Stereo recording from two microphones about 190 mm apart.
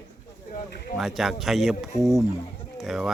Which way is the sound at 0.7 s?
50° left (ahead or behind).